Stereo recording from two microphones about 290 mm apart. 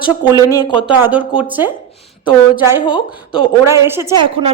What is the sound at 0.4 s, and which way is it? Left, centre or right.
Speech, centre.